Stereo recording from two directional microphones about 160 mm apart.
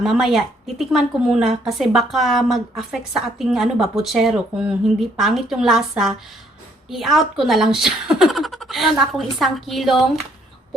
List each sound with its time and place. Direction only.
0.0 s a woman's voice: centre (ahead or behind)